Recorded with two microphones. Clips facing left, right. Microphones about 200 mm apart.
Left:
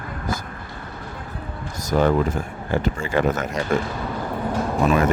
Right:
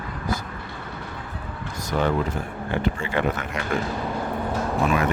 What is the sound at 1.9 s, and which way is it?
Speech, 40° left (ahead or behind).